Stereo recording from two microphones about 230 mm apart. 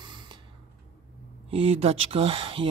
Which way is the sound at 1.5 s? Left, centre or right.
Right.